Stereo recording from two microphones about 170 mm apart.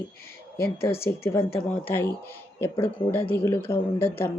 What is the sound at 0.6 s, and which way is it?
Speech, 15° left (ahead or behind).